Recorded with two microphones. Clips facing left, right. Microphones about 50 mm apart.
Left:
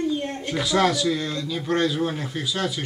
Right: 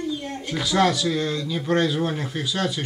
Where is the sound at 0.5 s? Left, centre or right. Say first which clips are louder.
Right 1 dB; centre.